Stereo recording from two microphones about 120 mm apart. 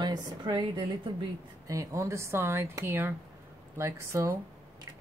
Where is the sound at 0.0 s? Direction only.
40° right (ahead or behind).